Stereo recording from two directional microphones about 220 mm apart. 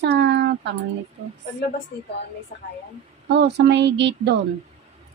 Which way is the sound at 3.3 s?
50° right (ahead or behind).